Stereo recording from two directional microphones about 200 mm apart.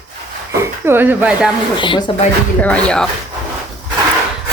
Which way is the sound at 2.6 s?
5° left (ahead or behind).